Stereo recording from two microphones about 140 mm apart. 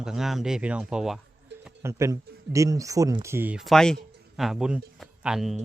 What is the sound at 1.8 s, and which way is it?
Speech, 20° right (ahead or behind).